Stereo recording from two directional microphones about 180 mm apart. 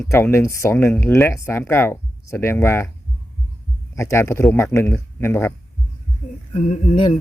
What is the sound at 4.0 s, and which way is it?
Speech, 15° left (ahead or behind).